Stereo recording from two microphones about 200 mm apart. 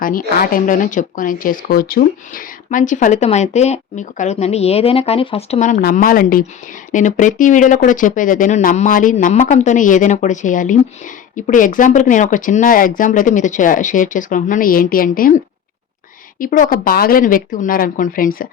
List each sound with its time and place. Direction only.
0.0 s speech: 45° left (ahead or behind)
16.4 s speech: 45° left (ahead or behind)